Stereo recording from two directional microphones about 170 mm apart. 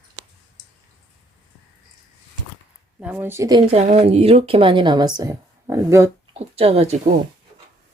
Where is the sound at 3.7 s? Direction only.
40° right (ahead or behind); by 6.1 s 15° right (ahead or behind).